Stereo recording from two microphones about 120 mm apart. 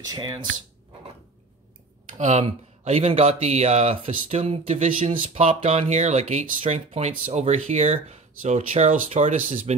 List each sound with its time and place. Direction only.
0.1 s speech: 30° right (ahead or behind)
2.1 s speech: 75° right (ahead or behind)
2.4 s speech: 60° right (ahead or behind)